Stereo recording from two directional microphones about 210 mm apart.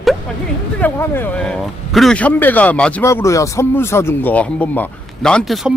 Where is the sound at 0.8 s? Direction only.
10° left (ahead or behind).